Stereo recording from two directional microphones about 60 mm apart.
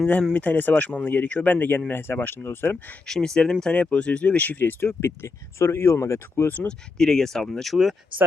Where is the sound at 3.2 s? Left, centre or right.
Centre; by 6.5 s left.